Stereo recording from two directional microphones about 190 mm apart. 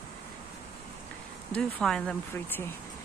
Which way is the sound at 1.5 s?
5° left (ahead or behind).